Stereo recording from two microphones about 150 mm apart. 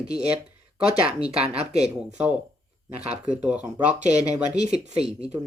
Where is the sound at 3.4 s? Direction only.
10° right (ahead or behind).